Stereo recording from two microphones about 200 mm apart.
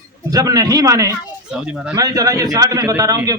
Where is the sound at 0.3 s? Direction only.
20° right (ahead or behind).